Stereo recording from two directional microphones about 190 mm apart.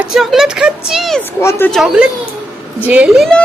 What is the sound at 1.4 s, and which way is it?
Speech, 10° left (ahead or behind).